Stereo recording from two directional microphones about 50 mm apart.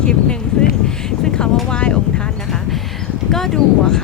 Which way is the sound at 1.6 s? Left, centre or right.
Left.